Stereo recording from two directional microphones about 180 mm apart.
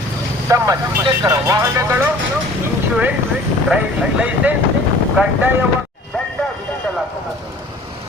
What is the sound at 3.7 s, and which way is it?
Vehicle, 5° right (ahead or behind).